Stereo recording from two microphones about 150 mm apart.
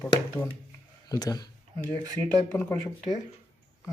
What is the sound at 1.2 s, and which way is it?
Speech, 25° left (ahead or behind).